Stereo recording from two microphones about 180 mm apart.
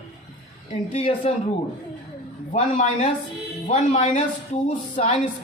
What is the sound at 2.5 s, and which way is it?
A man's voice, 45° left (ahead or behind).